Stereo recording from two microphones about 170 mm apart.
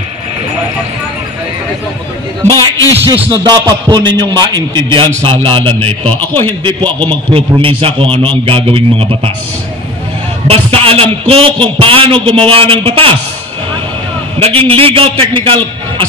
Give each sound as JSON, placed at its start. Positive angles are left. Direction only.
{"t": 2.4, "sound": "a sound", "side_deg": 20}
{"t": 3.1, "sound": "music", "side_deg": -25}
{"t": 5.4, "sound": "a man's voice", "side_deg": -30}
{"t": 5.8, "sound": "a man's voice", "side_deg": 10}
{"t": 7.3, "sound": "a man's voice", "side_deg": -35}
{"t": 10.5, "sound": "a man's voice", "side_deg": -35}
{"t": 14.4, "sound": "a man's voice", "side_deg": -35}